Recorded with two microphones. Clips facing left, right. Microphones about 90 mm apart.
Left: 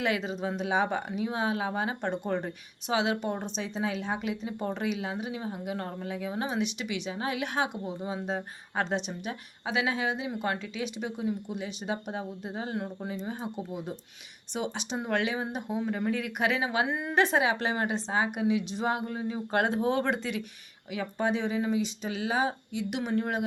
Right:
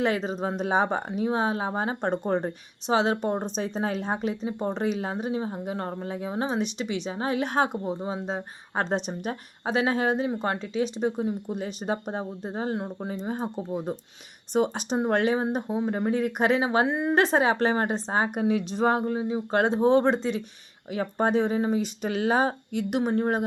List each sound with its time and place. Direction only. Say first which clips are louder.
0.0 s speech: right 4 dB; 35° right (ahead or behind)
8.0 s speech: right 2 dB; 30° right (ahead or behind)
17.2 s speech: right 4 dB; 40° right (ahead or behind)
19.1 s speech: right 4 dB; 20° right (ahead or behind)
20.9 s speech: right 5 dB; 40° right (ahead or behind)
22.0 s speech: right 8 dB; 55° right (ahead or behind); by 23.4 s 35° right (ahead or behind)